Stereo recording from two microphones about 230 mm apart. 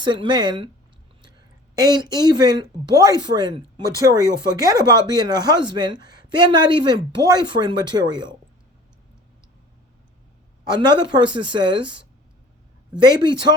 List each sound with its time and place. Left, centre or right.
0.0 s speech: centre
1.7 s speech: centre
10.7 s speech: centre